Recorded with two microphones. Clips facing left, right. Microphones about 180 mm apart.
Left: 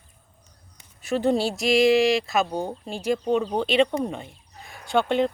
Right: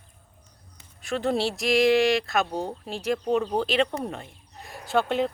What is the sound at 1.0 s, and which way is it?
Speech, centre (ahead or behind).